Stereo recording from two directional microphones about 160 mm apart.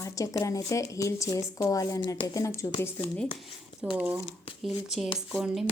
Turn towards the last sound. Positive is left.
turn(degrees=0)  # may be behind; listen again after turning